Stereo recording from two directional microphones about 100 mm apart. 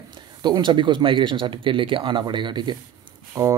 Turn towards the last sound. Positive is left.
turn(degrees=-35)  # may be behind; listen again after turning